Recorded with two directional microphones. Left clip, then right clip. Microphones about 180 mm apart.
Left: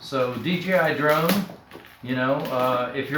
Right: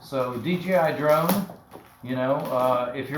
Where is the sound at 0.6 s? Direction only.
15° left (ahead or behind).